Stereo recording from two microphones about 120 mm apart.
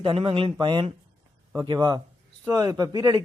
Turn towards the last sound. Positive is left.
turn(degrees=-35)  # may be behind; listen again after turning